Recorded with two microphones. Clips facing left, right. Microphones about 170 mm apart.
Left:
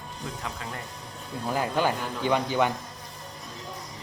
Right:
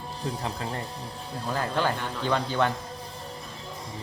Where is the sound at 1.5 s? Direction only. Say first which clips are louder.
Left 1 dB; 10° left (ahead or behind).